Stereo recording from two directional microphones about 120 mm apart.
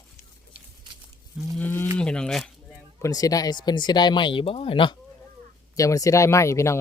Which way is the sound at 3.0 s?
30° left (ahead or behind).